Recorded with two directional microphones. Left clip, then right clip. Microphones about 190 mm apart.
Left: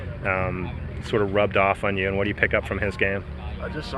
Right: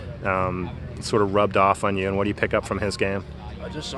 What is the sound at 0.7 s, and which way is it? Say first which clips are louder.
Speech: right 1 dB; 50° right (ahead or behind).